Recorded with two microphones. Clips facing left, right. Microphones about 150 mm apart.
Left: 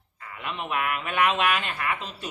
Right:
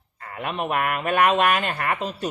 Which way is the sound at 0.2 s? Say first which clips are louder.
Right 6 dB; 55° right (ahead or behind).